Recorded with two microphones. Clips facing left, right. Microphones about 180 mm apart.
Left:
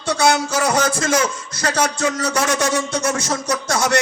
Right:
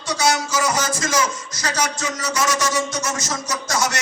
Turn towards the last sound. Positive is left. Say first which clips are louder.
# left 5 dB
turn(degrees=60)  # may be behind; listen again after turning